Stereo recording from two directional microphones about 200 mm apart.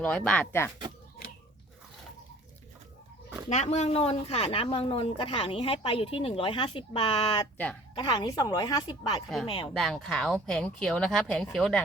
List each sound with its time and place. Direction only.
0.0 s speech: 5° left (ahead or behind)
3.5 s speech: 35° left (ahead or behind)
9.7 s speech: centre (ahead or behind)